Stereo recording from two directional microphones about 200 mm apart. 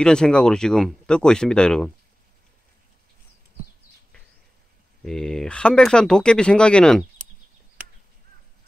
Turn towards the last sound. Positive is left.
turn(degrees=5)  # may be behind; listen again after turning